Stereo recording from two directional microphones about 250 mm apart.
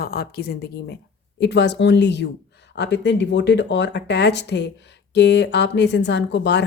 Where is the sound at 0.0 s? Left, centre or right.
Left.